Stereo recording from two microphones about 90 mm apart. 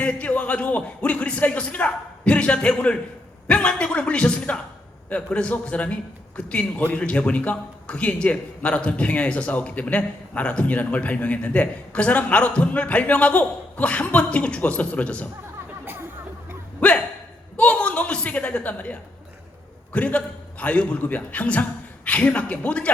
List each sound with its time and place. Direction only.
0.0 s a man's voice: 15° left (ahead or behind)
16.8 s a man's voice: 10° left (ahead or behind)